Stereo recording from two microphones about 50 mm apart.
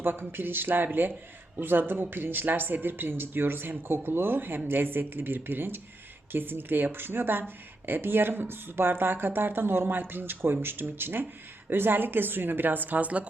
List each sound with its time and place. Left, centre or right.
0.0 s speech: right